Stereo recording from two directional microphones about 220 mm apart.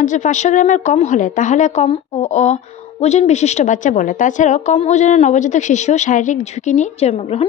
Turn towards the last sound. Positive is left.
turn(degrees=30)  # may be behind; listen again after turning